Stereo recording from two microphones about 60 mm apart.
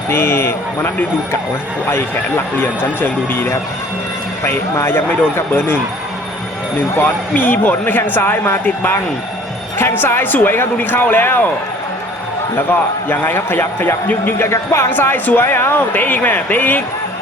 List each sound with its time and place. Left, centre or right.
0.1 s speech: left
1.9 s speech: left
4.7 s speech: left
6.9 s speech: left
13.1 s speech: left
14.8 s speech: left